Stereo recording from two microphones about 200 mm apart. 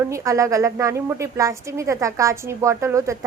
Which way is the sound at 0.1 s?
15° right (ahead or behind).